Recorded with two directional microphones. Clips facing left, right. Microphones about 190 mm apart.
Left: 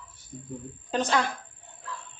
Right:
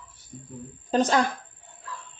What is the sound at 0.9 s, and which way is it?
Speech, 40° right (ahead or behind).